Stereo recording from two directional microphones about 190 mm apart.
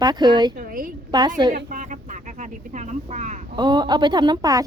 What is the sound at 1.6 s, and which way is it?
Speech, 40° right (ahead or behind).